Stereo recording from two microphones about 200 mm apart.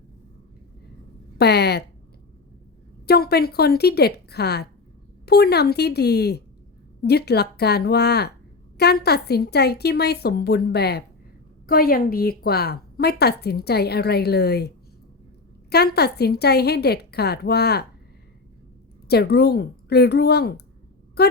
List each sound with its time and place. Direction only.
1.4 s speech: 55° left (ahead or behind)
3.1 s a woman's voice: 50° left (ahead or behind)
15.7 s a woman's voice: 55° left (ahead or behind)
19.0 s a woman's voice: 55° left (ahead or behind)